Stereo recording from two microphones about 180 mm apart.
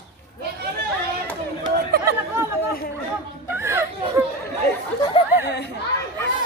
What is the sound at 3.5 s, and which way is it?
Children playing, 15° right (ahead or behind).